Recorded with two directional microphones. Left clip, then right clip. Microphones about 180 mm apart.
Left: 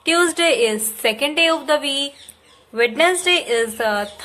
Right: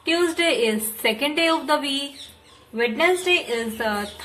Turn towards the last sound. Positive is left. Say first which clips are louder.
# left 5 dB
turn(degrees=35)  # may be behind; listen again after turning